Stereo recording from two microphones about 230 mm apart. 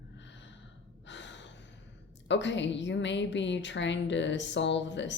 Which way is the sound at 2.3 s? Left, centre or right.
Left.